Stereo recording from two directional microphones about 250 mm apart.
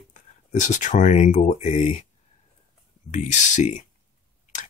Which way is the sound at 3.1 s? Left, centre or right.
Left.